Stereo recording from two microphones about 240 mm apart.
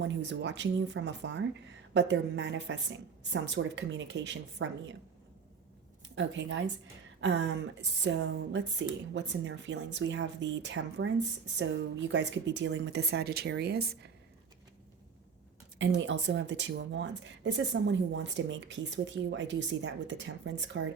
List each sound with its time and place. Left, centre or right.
0.0 s speech: right
6.1 s speech: right
15.8 s speech: right